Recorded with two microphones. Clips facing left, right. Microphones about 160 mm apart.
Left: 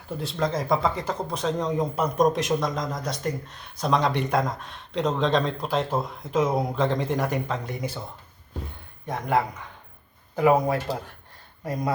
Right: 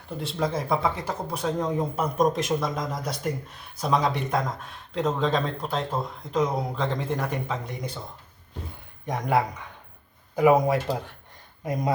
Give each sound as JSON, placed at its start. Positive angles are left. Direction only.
{"t": 0.2, "sound": "speech", "side_deg": -5}
{"t": 10.3, "sound": "speech", "side_deg": -15}